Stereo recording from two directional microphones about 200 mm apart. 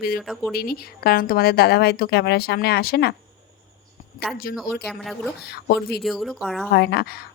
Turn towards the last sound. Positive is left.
turn(degrees=50)  # may be behind; listen again after turning